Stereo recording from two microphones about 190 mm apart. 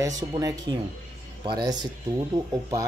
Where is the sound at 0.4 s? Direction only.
20° right (ahead or behind).